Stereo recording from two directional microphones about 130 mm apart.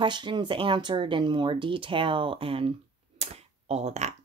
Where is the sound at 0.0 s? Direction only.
35° right (ahead or behind).